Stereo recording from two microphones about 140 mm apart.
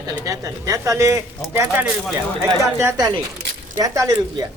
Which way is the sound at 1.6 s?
10° right (ahead or behind).